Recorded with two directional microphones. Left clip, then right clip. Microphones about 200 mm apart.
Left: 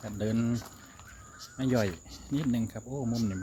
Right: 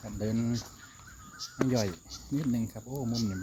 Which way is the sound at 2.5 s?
10° right (ahead or behind).